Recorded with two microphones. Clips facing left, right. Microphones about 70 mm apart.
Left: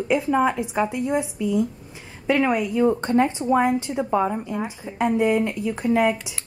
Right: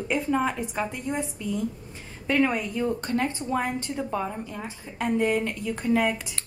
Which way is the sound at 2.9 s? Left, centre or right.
Left.